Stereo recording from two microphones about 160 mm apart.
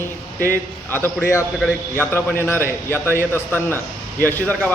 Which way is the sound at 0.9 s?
15° left (ahead or behind).